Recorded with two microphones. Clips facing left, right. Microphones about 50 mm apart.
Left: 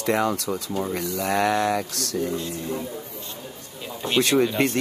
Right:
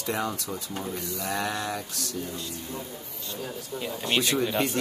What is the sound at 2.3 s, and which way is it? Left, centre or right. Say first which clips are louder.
Speech: left 8 dB; left.